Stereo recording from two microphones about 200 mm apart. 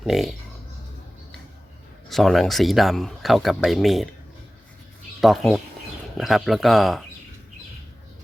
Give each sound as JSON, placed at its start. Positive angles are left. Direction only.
{"t": 0.0, "sound": "speech", "side_deg": 0}
{"t": 2.0, "sound": "speech", "side_deg": 0}
{"t": 5.2, "sound": "speech", "side_deg": 0}